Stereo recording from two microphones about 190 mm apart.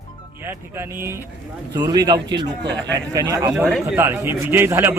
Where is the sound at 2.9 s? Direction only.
20° right (ahead or behind).